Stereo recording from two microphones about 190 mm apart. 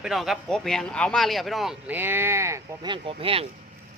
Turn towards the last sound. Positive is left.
turn(degrees=-30)  # may be behind; listen again after turning